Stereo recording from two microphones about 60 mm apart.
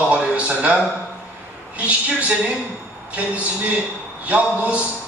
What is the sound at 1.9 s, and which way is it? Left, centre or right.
Speech, right.